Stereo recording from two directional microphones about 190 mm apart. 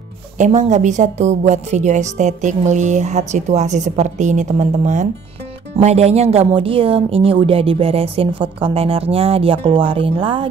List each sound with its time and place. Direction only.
0.4 s a woman's voice: 40° right (ahead or behind)